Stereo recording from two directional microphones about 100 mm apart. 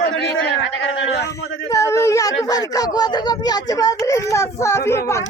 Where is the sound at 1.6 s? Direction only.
30° left (ahead or behind).